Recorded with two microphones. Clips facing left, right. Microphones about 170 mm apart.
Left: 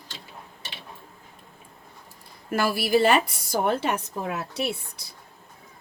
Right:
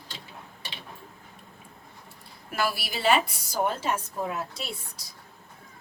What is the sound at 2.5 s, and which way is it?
A woman's voice, 50° left (ahead or behind).